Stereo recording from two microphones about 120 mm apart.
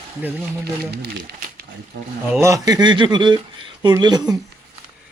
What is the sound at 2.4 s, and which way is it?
Speech, 25° right (ahead or behind).